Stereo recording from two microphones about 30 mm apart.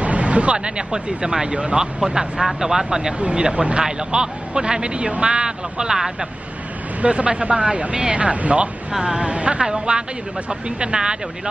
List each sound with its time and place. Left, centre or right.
0.0 s speech: right
1.8 s speech: right
3.2 s speech: right; by 6.1 s centre
7.0 s speech: right
9.0 s speech: right
9.3 s speech: right
10.5 s speech: right